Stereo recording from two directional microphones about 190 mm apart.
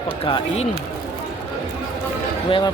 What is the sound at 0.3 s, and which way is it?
Speech, 30° left (ahead or behind).